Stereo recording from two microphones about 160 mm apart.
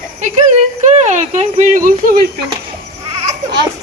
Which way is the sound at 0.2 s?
45° right (ahead or behind).